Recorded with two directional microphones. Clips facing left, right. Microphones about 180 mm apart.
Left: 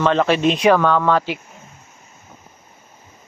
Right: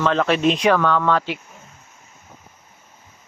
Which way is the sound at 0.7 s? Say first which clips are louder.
Left 2 dB; 15° left (ahead or behind).